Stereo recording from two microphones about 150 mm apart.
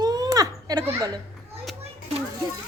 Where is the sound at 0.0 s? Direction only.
25° right (ahead or behind).